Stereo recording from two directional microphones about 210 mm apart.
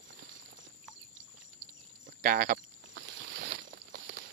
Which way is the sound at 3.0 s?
60° right (ahead or behind).